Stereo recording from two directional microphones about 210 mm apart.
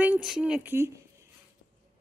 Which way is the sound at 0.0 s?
5° right (ahead or behind).